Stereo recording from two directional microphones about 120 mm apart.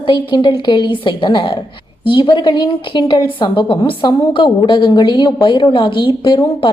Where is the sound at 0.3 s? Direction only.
40° left (ahead or behind).